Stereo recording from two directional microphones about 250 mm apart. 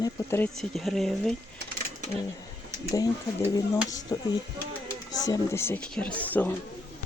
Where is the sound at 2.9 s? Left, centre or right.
Centre.